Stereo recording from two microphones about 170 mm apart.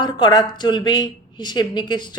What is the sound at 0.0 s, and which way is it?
Speech, 25° left (ahead or behind).